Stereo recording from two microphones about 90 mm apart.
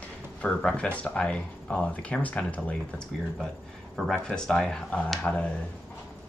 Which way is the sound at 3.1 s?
5° left (ahead or behind).